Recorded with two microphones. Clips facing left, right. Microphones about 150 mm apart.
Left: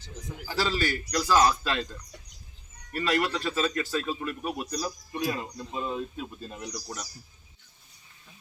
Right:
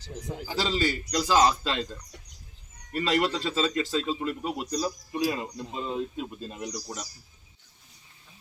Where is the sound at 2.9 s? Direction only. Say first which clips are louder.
Right 1 dB; 20° right (ahead or behind).